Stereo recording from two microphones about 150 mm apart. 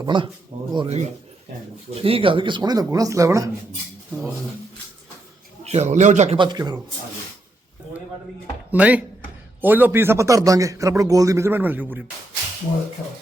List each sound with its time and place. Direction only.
0.0 s speech: 30° right (ahead or behind)
0.5 s a man's voice: 45° right (ahead or behind); by 3.5 s 20° right (ahead or behind)
5.6 s a man's voice: 45° right (ahead or behind)
6.3 s a man's voice: 30° right (ahead or behind)
8.7 s a man's voice: 10° right (ahead or behind)
13.0 s speech: 10° left (ahead or behind)